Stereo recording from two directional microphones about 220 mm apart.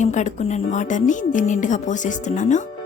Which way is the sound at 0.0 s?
35° left (ahead or behind).